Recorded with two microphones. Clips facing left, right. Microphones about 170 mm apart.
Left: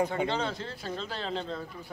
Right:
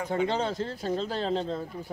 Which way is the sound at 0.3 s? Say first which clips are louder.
Right 3 dB; 45° right (ahead or behind).